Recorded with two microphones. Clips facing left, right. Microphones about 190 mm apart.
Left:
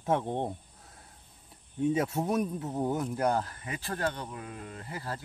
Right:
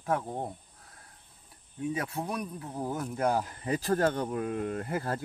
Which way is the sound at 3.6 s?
40° right (ahead or behind).